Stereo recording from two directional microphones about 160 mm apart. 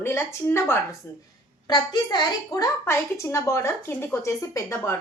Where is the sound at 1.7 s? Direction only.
25° left (ahead or behind).